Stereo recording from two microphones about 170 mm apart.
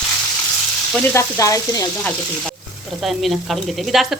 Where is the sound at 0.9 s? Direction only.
15° left (ahead or behind).